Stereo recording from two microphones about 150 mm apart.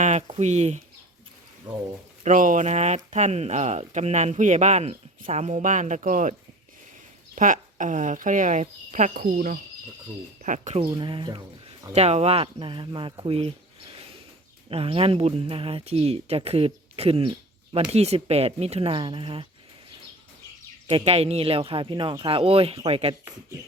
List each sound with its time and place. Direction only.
0.0 s speech: 45° right (ahead or behind)
2.2 s speech: 60° right (ahead or behind)
7.3 s speech: 60° right (ahead or behind)
9.1 s speech: 65° right (ahead or behind)
10.4 s speech: 55° right (ahead or behind)
10.8 s speech: 30° right (ahead or behind)
11.9 s speech: 45° right (ahead or behind)
14.7 s speech: 40° right (ahead or behind)
20.9 s speech: 40° right (ahead or behind)